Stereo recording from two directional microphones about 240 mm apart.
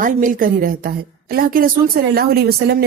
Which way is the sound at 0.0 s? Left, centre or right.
Right.